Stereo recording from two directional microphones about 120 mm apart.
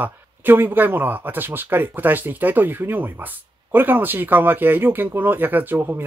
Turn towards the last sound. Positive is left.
turn(degrees=-15)  # may be behind; listen again after turning